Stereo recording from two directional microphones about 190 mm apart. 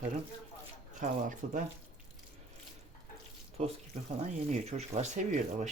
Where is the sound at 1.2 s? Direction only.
40° right (ahead or behind).